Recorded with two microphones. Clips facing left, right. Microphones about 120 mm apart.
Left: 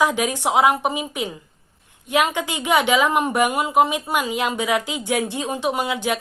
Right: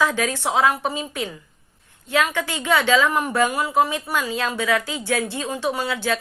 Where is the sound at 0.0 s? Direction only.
15° left (ahead or behind).